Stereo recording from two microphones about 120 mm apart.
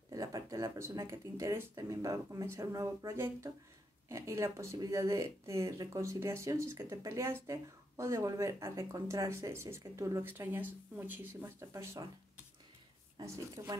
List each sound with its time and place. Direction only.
0.1 s speech: 30° right (ahead or behind)
13.2 s speech: 25° right (ahead or behind)